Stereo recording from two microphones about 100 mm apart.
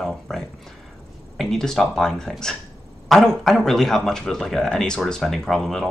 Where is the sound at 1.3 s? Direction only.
5° left (ahead or behind).